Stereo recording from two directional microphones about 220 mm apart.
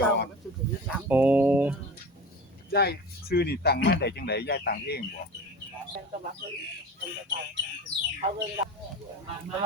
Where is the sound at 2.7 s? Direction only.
45° left (ahead or behind).